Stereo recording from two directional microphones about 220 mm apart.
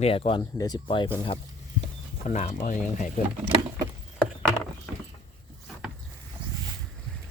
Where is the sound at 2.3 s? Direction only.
35° left (ahead or behind).